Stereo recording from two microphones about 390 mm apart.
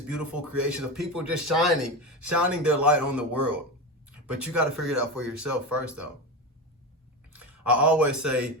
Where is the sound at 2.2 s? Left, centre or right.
Right.